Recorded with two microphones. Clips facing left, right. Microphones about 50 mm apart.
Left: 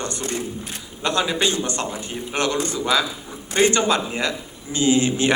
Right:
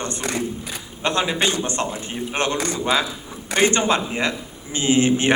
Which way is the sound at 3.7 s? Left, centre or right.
Right.